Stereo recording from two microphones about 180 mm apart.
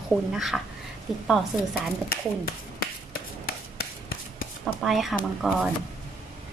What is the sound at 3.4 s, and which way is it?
Rub, 55° left (ahead or behind).